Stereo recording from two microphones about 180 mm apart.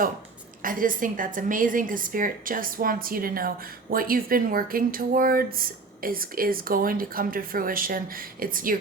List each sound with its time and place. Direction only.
0.6 s a woman's voice: 50° right (ahead or behind)